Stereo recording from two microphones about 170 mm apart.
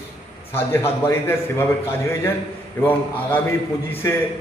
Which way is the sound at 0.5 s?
15° left (ahead or behind).